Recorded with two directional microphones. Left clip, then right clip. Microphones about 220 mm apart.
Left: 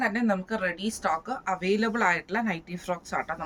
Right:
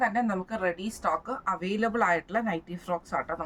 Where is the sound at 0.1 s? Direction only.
15° right (ahead or behind).